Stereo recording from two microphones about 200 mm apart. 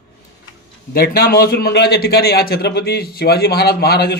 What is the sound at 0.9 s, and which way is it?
A man's voice, 50° left (ahead or behind).